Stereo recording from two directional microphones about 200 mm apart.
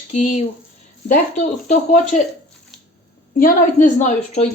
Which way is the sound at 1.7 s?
35° left (ahead or behind).